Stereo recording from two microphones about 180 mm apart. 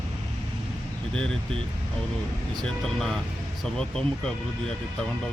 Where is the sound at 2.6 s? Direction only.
5° left (ahead or behind).